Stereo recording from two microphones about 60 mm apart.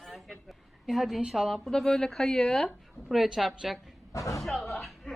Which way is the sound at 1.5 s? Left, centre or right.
Centre.